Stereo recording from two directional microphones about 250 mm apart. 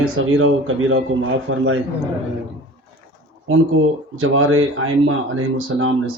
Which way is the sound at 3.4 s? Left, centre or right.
Right.